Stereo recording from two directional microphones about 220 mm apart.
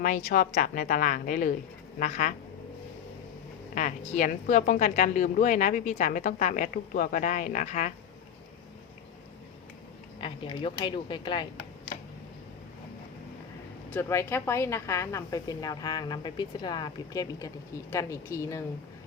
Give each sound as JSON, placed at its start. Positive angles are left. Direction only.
{"t": 0.3, "sound": "a woman's voice", "side_deg": 40}
{"t": 3.8, "sound": "a woman's voice", "side_deg": 35}
{"t": 10.2, "sound": "speech", "side_deg": 20}
{"t": 13.9, "sound": "a woman's voice", "side_deg": 10}